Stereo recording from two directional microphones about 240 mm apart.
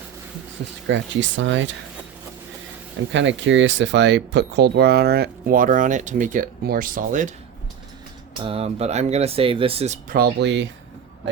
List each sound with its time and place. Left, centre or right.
0.9 s speech: right
3.1 s speech: right
8.4 s speech: right